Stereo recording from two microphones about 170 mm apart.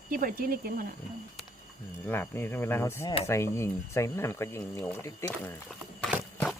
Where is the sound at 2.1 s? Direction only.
10° left (ahead or behind).